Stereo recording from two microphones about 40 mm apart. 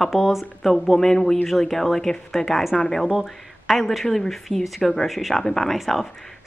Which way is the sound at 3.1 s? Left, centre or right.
Centre.